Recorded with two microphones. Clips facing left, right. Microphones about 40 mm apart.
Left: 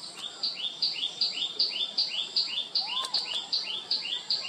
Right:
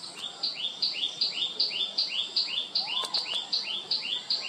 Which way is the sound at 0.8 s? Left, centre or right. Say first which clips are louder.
Even; centre.